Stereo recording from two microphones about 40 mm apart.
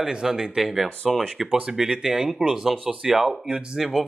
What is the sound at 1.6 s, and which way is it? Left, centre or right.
Speech, centre.